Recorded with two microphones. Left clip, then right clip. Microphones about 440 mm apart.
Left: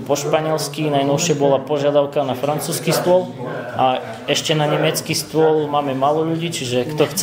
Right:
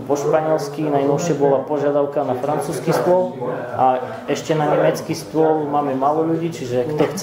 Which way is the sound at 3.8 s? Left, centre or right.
Left.